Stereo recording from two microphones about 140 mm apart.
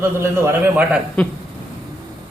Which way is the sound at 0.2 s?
20° right (ahead or behind).